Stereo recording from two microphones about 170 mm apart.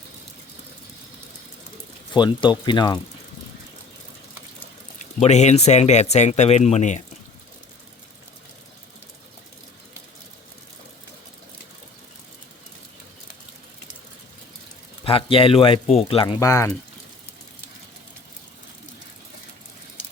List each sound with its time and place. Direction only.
2.1 s speech: 25° left (ahead or behind)
4.9 s speech: 40° left (ahead or behind)
15.0 s speech: 35° left (ahead or behind)
16.2 s speech: 20° left (ahead or behind)